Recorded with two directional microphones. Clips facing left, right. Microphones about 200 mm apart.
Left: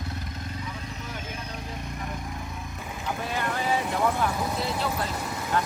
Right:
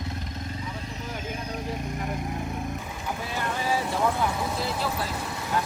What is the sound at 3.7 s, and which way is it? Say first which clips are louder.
Speech: even; 5° right (ahead or behind).